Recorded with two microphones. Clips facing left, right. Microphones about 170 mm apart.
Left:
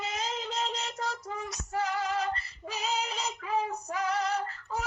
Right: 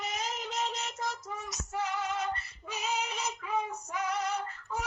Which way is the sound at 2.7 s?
35° left (ahead or behind).